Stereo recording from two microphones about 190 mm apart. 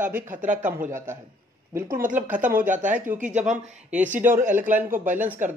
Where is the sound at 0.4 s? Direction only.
40° right (ahead or behind).